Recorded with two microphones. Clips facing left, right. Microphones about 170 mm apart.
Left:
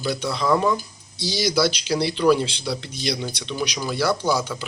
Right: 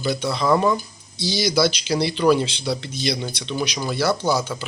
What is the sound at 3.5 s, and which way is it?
Speech, 15° right (ahead or behind).